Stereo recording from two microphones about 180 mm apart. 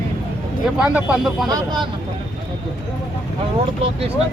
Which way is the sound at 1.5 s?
25° right (ahead or behind).